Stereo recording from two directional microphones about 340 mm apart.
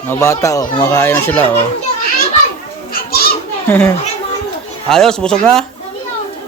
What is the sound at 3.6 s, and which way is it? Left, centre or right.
Speech, centre.